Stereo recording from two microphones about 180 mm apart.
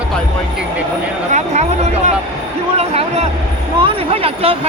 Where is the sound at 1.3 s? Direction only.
40° right (ahead or behind).